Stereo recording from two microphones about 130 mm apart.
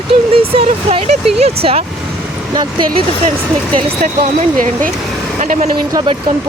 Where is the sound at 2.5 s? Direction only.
35° right (ahead or behind).